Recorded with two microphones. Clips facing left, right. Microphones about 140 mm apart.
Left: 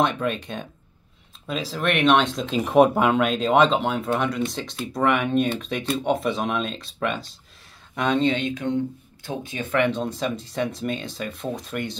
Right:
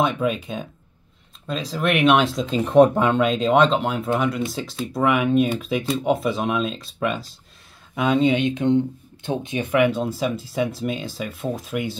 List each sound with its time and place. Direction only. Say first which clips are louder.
0.0 s speech: right 2 dB; 5° right (ahead or behind)
8.5 s speech: right 5 dB; 20° right (ahead or behind); by 12.0 s 5° right (ahead or behind)